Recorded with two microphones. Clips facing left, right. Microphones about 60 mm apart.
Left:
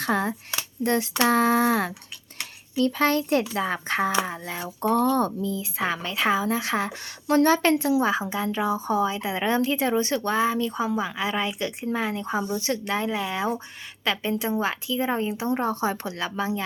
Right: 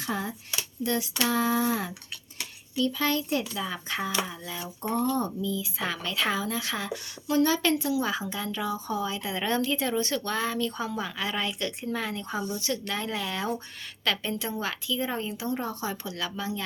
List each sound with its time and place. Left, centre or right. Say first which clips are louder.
0.0 s speech: left 7 dB; left
0.3 s a child's voice: left 5 dB; left
4.3 s a sound: left 5 dB; left
4.8 s a woman's voice: left 6 dB; left